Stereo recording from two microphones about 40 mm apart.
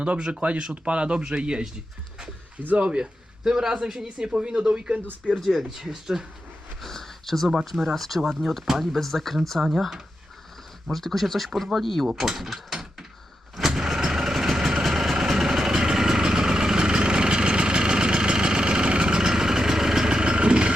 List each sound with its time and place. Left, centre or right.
0.0 s speech: right
2.6 s speech: right
2.8 s speech: right
3.4 s speech: centre
5.4 s speech: centre
6.8 s speech: centre
10.9 s speech: centre
12.4 s mechanisms: centre
13.6 s vehicle: centre; by 20.7 s right